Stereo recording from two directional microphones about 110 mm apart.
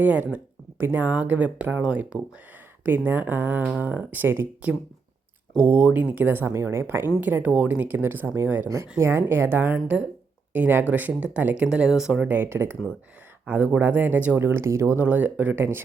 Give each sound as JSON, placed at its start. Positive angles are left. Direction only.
{"t": 0.0, "sound": "speech", "side_deg": -15}
{"t": 12.3, "sound": "speech", "side_deg": -20}